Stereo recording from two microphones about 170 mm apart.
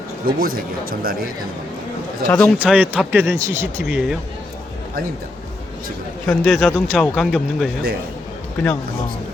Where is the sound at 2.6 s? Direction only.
10° right (ahead or behind).